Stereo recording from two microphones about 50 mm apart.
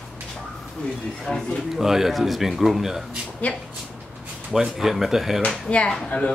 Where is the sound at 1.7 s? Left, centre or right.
Centre.